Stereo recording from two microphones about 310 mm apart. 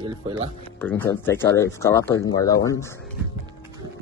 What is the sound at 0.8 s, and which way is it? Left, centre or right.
Speech, centre.